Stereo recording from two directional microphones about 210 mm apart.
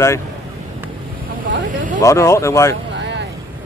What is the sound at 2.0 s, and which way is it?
Speech, 15° left (ahead or behind).